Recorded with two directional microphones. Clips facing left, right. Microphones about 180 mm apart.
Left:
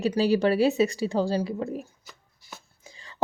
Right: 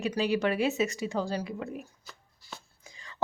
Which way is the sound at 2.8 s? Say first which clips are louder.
Left 2 dB; 30° left (ahead or behind).